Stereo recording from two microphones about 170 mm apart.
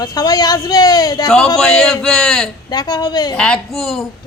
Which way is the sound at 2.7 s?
25° left (ahead or behind).